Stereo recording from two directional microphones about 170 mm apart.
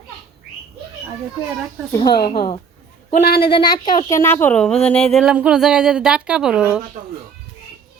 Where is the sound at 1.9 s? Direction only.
25° left (ahead or behind).